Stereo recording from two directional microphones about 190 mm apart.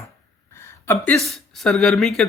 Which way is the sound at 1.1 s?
Centre (ahead or behind).